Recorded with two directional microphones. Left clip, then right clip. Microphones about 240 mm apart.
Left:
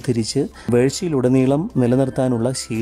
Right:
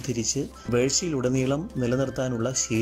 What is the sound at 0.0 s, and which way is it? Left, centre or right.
Speech, centre.